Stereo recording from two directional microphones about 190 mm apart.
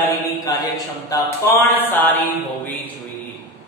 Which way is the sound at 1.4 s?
15° left (ahead or behind).